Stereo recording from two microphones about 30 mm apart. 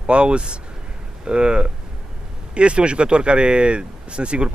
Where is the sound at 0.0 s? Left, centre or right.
Right.